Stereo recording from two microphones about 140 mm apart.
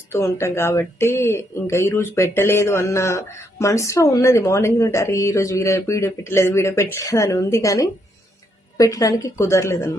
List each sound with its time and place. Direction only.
0.1 s speech: 20° left (ahead or behind)